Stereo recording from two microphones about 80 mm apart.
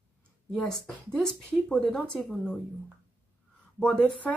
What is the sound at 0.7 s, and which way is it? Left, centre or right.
Speech, centre.